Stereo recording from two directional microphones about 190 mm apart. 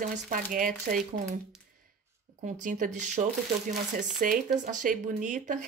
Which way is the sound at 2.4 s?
40° right (ahead or behind).